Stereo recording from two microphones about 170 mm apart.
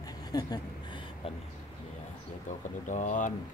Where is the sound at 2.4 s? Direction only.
45° left (ahead or behind).